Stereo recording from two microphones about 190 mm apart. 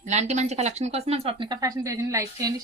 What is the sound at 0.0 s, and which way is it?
Speech, 35° right (ahead or behind).